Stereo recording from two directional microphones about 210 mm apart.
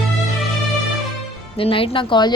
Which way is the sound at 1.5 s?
25° left (ahead or behind).